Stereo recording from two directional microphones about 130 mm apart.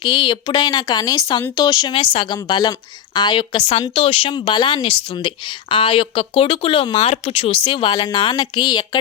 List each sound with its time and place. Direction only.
0.0 s speech: 35° left (ahead or behind)